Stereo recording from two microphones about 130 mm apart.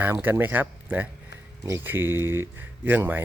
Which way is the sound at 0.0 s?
15° right (ahead or behind).